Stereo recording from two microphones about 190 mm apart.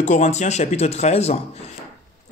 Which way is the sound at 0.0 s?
40° left (ahead or behind).